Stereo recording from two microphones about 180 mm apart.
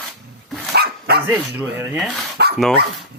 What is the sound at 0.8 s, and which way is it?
Dog, 60° right (ahead or behind).